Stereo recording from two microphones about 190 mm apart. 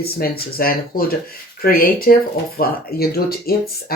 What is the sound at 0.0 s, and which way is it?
Speech, 55° left (ahead or behind).